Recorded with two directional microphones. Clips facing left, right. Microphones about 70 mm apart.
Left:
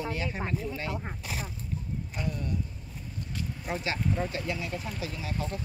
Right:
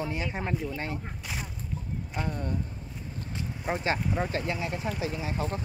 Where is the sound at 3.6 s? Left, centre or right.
Right.